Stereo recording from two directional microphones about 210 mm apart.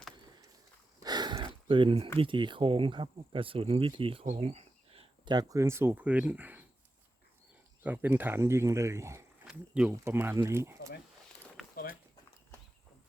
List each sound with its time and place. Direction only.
1.0 s a sound: 20° right (ahead or behind)
2.1 s speech: 25° right (ahead or behind); by 6.7 s 10° right (ahead or behind)
7.9 s speech: 10° right (ahead or behind)